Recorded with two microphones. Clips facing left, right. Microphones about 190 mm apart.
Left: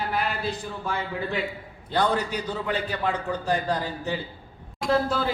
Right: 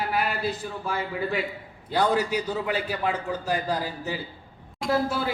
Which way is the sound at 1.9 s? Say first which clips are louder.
Right 1 dB; 5° right (ahead or behind).